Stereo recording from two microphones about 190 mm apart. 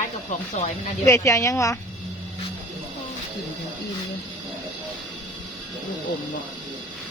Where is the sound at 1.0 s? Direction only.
15° left (ahead or behind).